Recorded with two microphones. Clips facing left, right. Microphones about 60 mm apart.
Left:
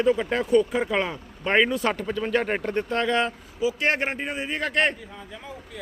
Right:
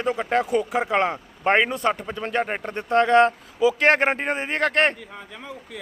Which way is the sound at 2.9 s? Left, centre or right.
Right.